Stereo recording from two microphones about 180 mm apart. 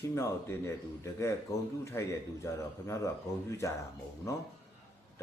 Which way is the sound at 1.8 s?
15° left (ahead or behind).